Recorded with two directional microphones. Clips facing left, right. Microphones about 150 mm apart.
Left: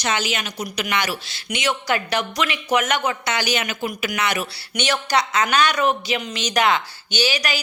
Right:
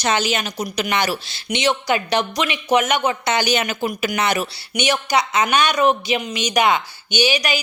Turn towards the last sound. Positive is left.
turn(degrees=-20)  # may be behind; listen again after turning